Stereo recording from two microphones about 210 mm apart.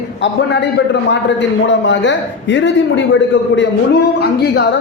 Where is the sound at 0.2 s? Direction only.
55° left (ahead or behind).